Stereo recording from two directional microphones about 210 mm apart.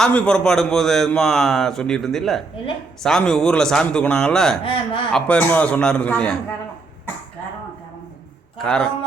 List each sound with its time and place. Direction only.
0.0 s a man's voice: 5° left (ahead or behind)
4.6 s speech: 25° left (ahead or behind)
5.1 s a man's voice: 5° left (ahead or behind)
8.5 s a man's voice: 5° left (ahead or behind)